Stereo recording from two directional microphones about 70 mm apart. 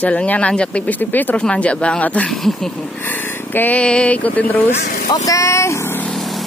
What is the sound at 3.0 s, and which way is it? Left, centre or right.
Speech, left.